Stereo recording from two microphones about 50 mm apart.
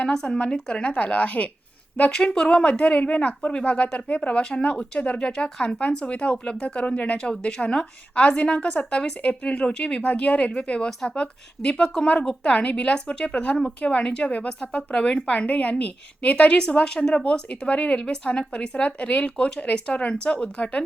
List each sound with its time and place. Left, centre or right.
0.1 s speech: centre; by 1.5 s left
2.0 s speech: centre